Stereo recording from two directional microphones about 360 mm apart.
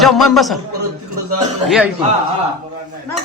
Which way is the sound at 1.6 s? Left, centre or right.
Centre.